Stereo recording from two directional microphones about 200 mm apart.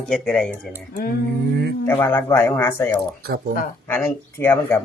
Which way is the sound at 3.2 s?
50° right (ahead or behind).